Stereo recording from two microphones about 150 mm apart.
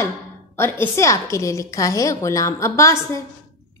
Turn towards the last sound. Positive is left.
turn(degrees=20)  # may be behind; listen again after turning